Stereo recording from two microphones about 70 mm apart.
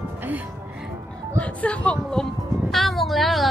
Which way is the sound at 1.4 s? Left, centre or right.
Centre.